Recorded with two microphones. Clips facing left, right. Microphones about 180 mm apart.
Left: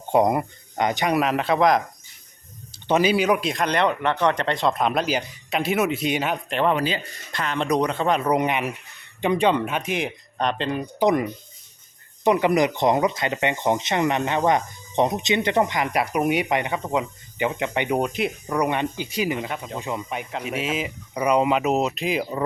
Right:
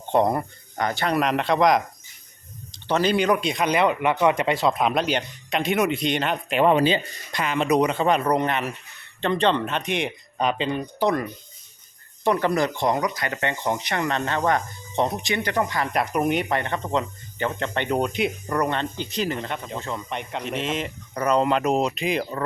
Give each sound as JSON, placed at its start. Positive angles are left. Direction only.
{"t": 0.1, "sound": "speech", "side_deg": 10}
{"t": 2.8, "sound": "speech", "side_deg": 10}
{"t": 6.5, "sound": "speech", "side_deg": -10}
{"t": 6.7, "sound": "speech", "side_deg": -25}
{"t": 7.3, "sound": "speech", "side_deg": -5}
{"t": 11.0, "sound": "speech", "side_deg": 15}
{"t": 15.9, "sound": "speech", "side_deg": 10}
{"t": 18.6, "sound": "speech", "side_deg": 10}